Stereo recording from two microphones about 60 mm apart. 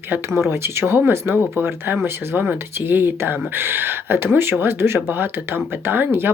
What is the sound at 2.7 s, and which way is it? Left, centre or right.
Speech, right.